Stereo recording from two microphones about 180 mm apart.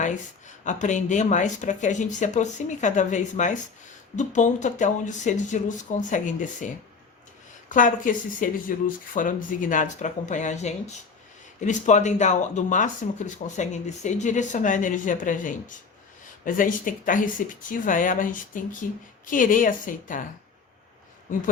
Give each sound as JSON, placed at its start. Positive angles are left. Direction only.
{"t": 0.0, "sound": "speech", "side_deg": 45}
{"t": 7.7, "sound": "speech", "side_deg": 45}